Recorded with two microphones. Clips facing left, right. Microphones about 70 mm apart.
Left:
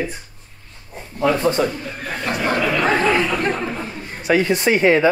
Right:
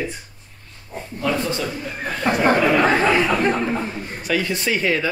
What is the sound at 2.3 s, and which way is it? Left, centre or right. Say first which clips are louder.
Speech: right 4 dB; right.